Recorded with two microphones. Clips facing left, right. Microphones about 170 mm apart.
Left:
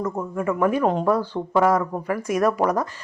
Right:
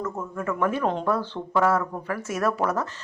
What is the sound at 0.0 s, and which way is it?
Speech, 15° left (ahead or behind).